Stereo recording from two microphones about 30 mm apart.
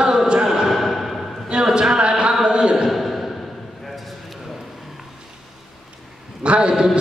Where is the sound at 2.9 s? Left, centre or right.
Centre.